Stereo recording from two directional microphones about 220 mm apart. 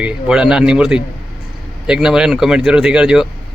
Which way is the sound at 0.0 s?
5° right (ahead or behind).